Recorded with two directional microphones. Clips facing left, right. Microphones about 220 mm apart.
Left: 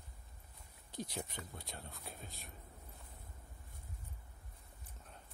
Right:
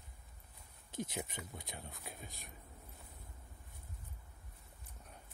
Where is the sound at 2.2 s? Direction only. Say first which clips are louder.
Even; 15° right (ahead or behind).